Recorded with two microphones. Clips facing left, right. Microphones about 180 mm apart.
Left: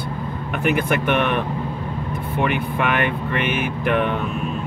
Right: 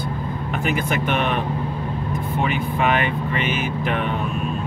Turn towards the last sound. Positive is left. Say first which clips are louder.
# left 3 dB
turn(degrees=60)  # may be behind; listen again after turning